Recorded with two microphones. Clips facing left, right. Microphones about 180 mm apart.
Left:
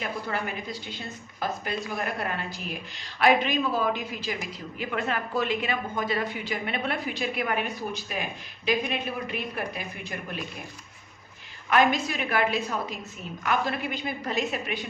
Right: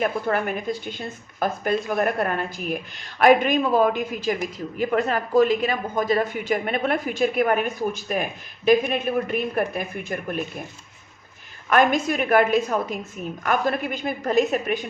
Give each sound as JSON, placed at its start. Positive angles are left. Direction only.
{"t": 0.0, "sound": "a woman's voice", "side_deg": -55}
{"t": 11.7, "sound": "a woman's voice", "side_deg": -50}